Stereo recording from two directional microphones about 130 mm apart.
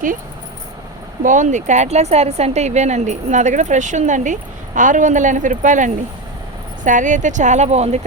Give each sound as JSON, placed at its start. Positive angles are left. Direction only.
{"t": 1.2, "sound": "speech", "side_deg": -75}